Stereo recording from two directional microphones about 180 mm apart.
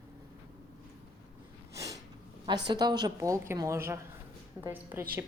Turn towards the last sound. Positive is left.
turn(degrees=-15)  # may be behind; listen again after turning